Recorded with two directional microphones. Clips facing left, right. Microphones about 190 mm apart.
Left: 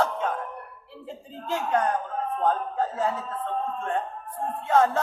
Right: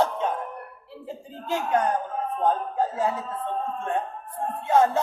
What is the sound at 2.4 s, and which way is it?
Speech, 15° right (ahead or behind).